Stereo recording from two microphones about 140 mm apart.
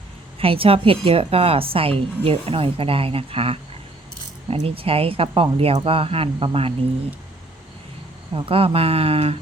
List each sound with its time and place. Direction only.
0.3 s a woman's voice: 40° right (ahead or behind)
8.4 s speech: 40° right (ahead or behind)